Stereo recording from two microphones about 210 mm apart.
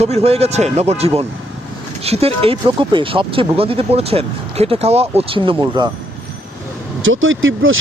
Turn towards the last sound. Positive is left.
turn(degrees=-70)  # may be behind; listen again after turning